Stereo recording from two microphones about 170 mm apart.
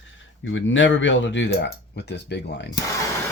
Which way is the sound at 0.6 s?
90° left.